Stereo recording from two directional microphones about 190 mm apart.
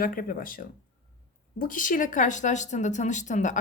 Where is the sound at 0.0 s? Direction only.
45° left (ahead or behind).